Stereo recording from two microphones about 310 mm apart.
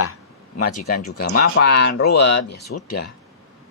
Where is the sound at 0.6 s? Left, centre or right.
Left.